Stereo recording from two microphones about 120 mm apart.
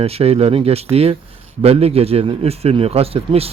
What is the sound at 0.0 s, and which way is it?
A man's voice, 55° right (ahead or behind).